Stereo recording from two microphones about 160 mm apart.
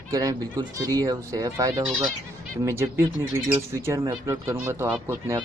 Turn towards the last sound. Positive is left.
turn(degrees=-15)  # may be behind; listen again after turning